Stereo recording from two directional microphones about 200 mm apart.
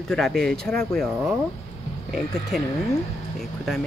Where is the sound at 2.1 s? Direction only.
Centre (ahead or behind).